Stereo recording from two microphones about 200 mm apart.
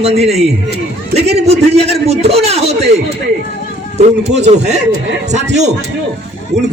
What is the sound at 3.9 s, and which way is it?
Speech, 35° right (ahead or behind).